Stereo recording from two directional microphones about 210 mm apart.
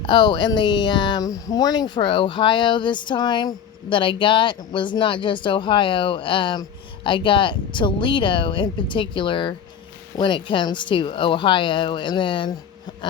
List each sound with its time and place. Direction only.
0.0 s speech: 20° left (ahead or behind)